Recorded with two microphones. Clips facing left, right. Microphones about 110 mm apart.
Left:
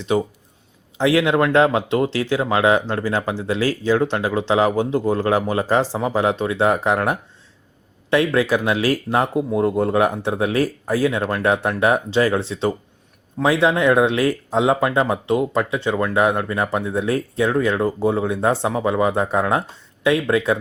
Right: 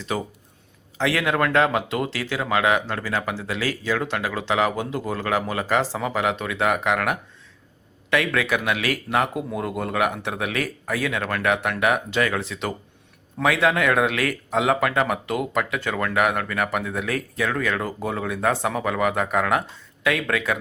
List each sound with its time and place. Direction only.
0.9 s speech: 25° left (ahead or behind)